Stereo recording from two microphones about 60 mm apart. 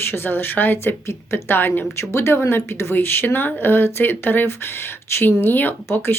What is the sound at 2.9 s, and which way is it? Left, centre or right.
Speech, left.